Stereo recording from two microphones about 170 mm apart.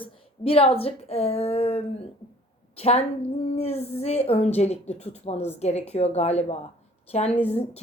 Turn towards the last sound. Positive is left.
turn(degrees=40)  # may be behind; listen again after turning